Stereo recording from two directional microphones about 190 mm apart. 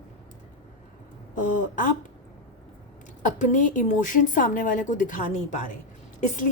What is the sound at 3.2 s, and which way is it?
A woman's voice, 40° left (ahead or behind).